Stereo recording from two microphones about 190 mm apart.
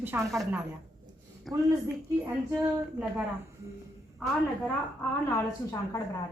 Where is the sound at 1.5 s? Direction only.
Centre (ahead or behind).